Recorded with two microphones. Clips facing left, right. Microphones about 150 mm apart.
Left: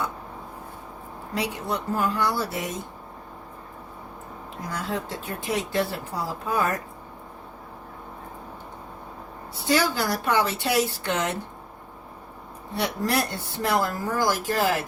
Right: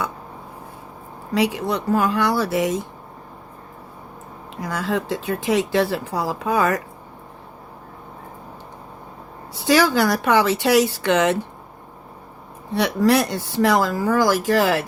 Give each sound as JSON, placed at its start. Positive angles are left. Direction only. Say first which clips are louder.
{"t": 1.3, "sound": "speech", "louder": "right 7 dB", "side_deg": -90}
{"t": 4.6, "sound": "speech", "louder": "right 6 dB", "side_deg": -90}
{"t": 9.6, "sound": "speech", "louder": "right 7 dB", "side_deg": -90}
{"t": 12.7, "sound": "speech", "louder": "right 8 dB", "side_deg": -90}